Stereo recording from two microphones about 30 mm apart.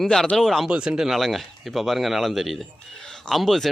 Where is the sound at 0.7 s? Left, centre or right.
Right.